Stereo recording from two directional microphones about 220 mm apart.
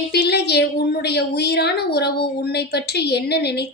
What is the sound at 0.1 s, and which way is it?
Speech, 50° left (ahead or behind).